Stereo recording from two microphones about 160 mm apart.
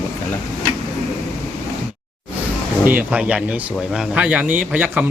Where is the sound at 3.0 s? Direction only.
5° right (ahead or behind).